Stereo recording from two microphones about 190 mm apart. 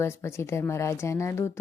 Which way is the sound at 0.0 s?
15° left (ahead or behind).